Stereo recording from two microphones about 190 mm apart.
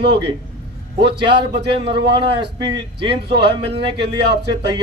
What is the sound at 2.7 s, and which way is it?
Speech, 30° right (ahead or behind).